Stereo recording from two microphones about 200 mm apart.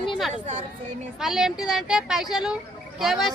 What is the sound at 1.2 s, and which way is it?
Speech, centre (ahead or behind).